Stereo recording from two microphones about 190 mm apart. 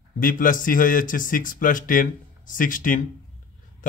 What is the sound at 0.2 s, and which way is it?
A man's voice, 45° left (ahead or behind).